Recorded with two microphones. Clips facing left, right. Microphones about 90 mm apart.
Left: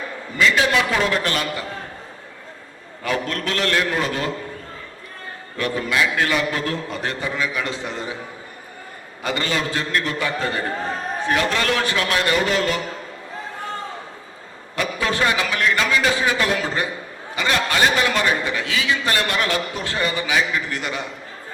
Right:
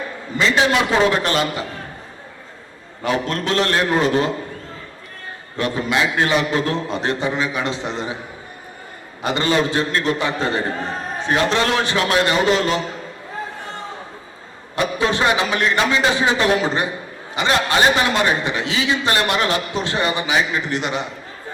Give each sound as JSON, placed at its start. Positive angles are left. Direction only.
{"t": 0.3, "sound": "a man's voice", "side_deg": -25}
{"t": 3.0, "sound": "a man's voice", "side_deg": -20}
{"t": 5.5, "sound": "a man's voice", "side_deg": -20}
{"t": 9.2, "sound": "a man's voice", "side_deg": -25}
{"t": 14.8, "sound": "a man's voice", "side_deg": -25}